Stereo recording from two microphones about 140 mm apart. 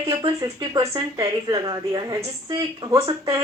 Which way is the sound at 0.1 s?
25° right (ahead or behind).